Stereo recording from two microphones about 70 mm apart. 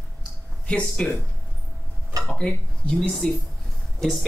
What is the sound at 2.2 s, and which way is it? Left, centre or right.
Speech, centre.